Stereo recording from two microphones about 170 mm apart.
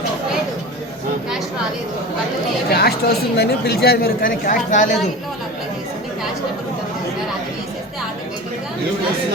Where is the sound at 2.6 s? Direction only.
70° left (ahead or behind); by 5.1 s 50° left (ahead or behind).